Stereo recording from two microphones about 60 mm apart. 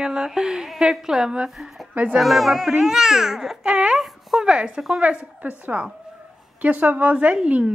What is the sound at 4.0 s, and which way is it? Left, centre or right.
A woman's voice, centre.